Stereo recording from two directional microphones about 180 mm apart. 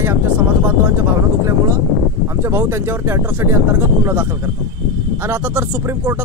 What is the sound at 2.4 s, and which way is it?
Speech, 15° right (ahead or behind).